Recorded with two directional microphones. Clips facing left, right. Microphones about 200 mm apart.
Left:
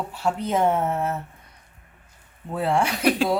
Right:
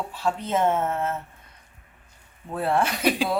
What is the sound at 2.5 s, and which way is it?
Speech, 15° left (ahead or behind).